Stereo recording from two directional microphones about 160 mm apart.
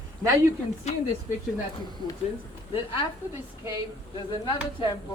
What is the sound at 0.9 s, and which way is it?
Speech, 45° left (ahead or behind).